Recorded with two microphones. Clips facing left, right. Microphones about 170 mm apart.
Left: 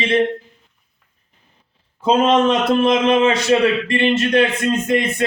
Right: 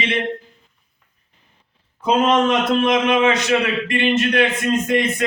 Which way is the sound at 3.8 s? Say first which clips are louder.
Left 2 dB; 30° left (ahead or behind).